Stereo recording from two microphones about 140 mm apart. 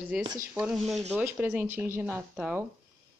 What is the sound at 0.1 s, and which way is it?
Speech, 10° right (ahead or behind).